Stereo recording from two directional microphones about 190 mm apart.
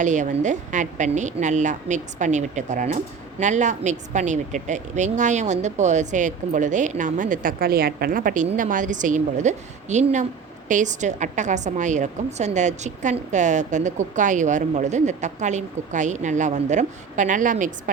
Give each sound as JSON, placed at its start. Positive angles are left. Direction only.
{"t": 0.0, "sound": "a woman's voice", "side_deg": -40}